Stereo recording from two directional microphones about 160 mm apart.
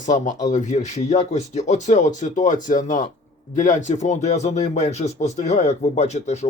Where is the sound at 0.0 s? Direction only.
50° left (ahead or behind).